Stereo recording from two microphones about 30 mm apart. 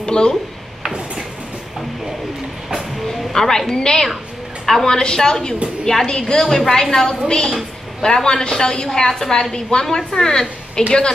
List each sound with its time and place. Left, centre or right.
0.0 s a sound: left
3.1 s a sound: centre
3.7 s a woman's voice: left
4.6 s a woman's voice: centre
4.9 s a woman's voice: left
6.4 s a woman's voice: centre; by 10.9 s left